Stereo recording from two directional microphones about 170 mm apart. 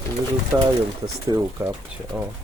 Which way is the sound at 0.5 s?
10° right (ahead or behind).